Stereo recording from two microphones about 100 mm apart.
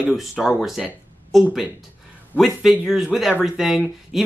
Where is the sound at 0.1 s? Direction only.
Centre (ahead or behind).